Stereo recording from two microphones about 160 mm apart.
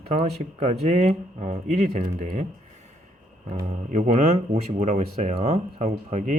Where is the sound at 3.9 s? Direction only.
45° right (ahead or behind).